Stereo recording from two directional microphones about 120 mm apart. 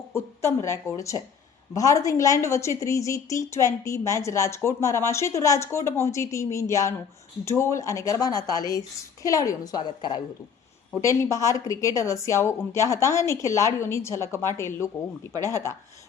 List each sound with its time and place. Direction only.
0.1 s a woman's voice: 25° left (ahead or behind); by 10.2 s 40° left (ahead or behind)
11.0 s a woman's voice: 25° left (ahead or behind)